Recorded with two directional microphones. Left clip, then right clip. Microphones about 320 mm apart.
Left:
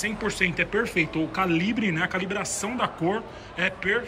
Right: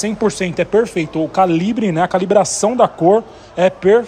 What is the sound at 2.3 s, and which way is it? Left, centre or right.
A man's voice, centre.